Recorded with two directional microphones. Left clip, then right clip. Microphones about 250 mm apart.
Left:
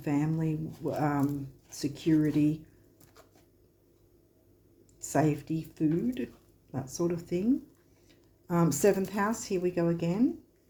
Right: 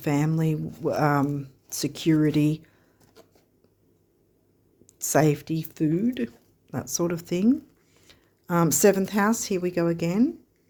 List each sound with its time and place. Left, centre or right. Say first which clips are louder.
0.0 s speech: right 5 dB; right
4.9 s speech: right 7 dB; right